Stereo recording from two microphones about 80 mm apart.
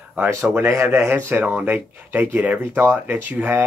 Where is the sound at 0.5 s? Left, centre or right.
Right.